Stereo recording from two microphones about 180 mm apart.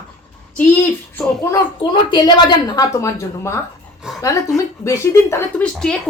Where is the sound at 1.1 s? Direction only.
15° left (ahead or behind).